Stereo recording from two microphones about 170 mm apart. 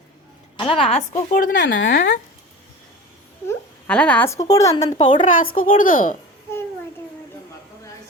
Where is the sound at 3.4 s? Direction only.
5° left (ahead or behind); by 5.2 s 30° left (ahead or behind).